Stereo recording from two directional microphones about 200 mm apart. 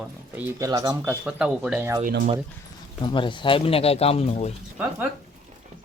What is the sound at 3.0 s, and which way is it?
Speech, 25° left (ahead or behind).